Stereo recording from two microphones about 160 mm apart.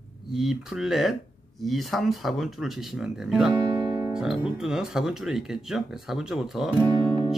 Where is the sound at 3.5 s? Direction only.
20° right (ahead or behind).